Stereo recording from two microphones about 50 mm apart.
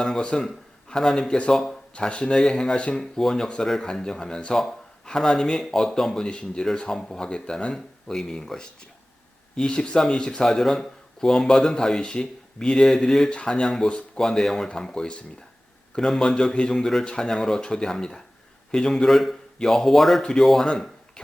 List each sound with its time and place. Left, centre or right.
0.0 s speech: centre
2.0 s speech: left
4.5 s speech: centre